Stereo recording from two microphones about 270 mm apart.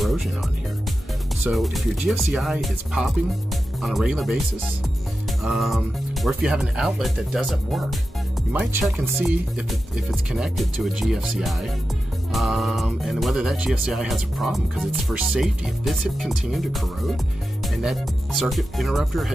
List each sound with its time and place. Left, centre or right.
0.0 s music: centre
1.4 s speech: centre
5.4 s speech: centre